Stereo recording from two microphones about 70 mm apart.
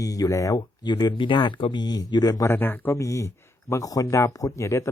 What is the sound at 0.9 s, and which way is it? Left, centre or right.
Speech, left.